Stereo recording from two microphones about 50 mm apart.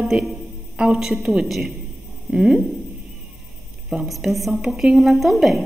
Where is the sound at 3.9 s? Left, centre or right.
Centre.